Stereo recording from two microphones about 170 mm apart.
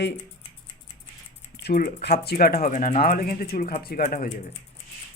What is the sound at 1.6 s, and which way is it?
Speech, 65° left (ahead or behind).